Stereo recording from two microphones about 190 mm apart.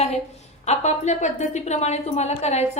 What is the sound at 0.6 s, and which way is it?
A woman's voice, 35° left (ahead or behind).